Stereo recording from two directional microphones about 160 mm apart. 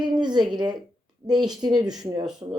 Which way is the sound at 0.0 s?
25° right (ahead or behind).